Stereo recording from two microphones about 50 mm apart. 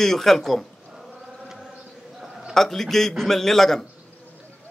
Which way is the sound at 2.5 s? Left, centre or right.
Centre.